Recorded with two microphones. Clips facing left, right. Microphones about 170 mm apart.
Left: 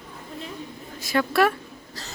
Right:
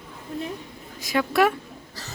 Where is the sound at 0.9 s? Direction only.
15° right (ahead or behind).